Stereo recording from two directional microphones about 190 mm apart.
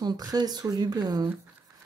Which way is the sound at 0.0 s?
20° right (ahead or behind).